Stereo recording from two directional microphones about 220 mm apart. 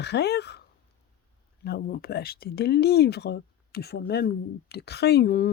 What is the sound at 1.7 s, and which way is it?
Speech, 40° left (ahead or behind).